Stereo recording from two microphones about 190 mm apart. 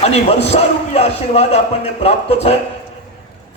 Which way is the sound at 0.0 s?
35° left (ahead or behind).